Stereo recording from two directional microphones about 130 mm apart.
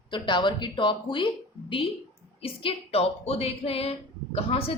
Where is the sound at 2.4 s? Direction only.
50° left (ahead or behind).